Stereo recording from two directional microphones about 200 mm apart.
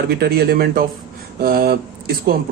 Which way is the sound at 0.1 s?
50° right (ahead or behind).